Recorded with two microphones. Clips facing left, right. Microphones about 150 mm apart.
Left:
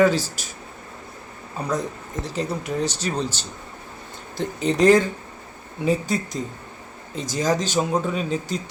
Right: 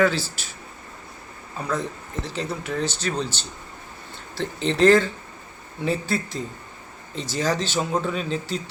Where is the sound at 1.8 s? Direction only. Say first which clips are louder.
Left 1 dB; 40° left (ahead or behind).